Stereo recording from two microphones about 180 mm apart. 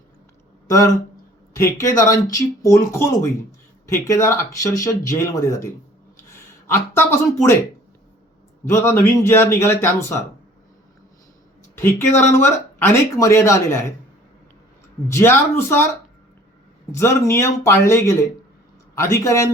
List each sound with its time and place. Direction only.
1.6 s speech: 20° left (ahead or behind)
6.7 s speech: 15° left (ahead or behind)
8.6 s speech: 15° left (ahead or behind)
11.8 s speech: 15° left (ahead or behind)
15.0 s speech: 15° left (ahead or behind)
16.9 s speech: 15° left (ahead or behind)